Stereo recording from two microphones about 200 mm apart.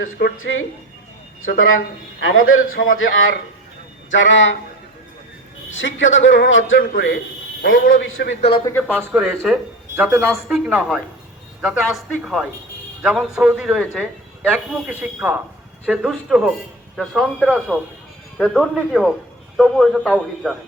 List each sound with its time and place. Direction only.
0.0 s speech: 75° left (ahead or behind); by 2.8 s 90° left
3.0 s a man's voice: 75° left (ahead or behind)
5.7 s a man's voice: 70° left (ahead or behind)
7.6 s a man's voice: 45° left (ahead or behind)
8.9 s a man's voice: 10° right (ahead or behind)